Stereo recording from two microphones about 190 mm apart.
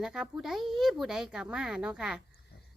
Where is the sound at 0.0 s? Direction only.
5° right (ahead or behind).